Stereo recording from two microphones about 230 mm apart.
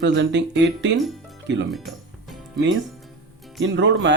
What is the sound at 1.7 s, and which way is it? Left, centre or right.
Music, centre.